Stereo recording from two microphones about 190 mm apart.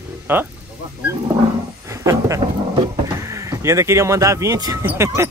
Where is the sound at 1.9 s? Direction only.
15° right (ahead or behind).